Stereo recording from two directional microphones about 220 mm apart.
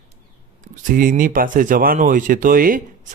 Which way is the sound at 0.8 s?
40° right (ahead or behind).